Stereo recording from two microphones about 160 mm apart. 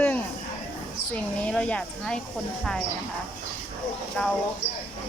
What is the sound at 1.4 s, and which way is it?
Speech, 5° left (ahead or behind).